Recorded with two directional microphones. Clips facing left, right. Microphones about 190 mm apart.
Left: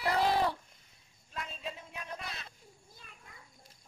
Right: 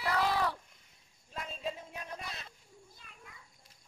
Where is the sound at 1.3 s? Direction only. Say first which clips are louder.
Right 3 dB; 35° right (ahead or behind).